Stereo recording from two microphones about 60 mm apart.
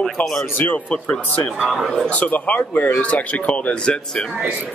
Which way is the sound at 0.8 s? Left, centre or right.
Left.